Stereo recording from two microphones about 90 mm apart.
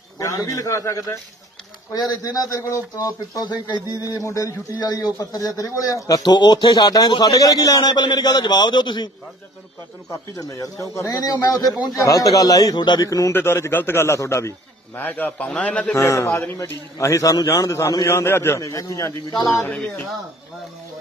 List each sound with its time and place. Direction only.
0.2 s speech: 40° left (ahead or behind); by 9.1 s 55° left (ahead or behind)
10.3 s speech: 40° left (ahead or behind)
13.0 s speech: 40° left (ahead or behind)
13.3 s a man's voice: 25° left (ahead or behind)
15.0 s a man's voice: 20° left (ahead or behind)
15.9 s speech: 30° left (ahead or behind)
18.0 s a man's voice: 30° left (ahead or behind)
18.6 s speech: 40° left (ahead or behind)